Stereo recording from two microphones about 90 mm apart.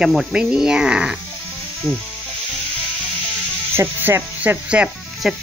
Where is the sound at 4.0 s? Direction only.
25° right (ahead or behind); by 5.4 s 5° right (ahead or behind).